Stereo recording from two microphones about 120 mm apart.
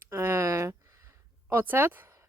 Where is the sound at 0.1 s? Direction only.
20° right (ahead or behind).